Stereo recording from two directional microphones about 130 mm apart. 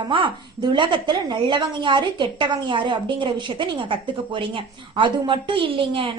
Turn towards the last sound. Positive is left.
turn(degrees=-40)  # may be behind; listen again after turning